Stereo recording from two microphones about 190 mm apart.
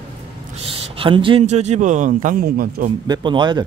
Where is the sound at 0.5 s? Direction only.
30° right (ahead or behind); by 2.9 s 50° right (ahead or behind).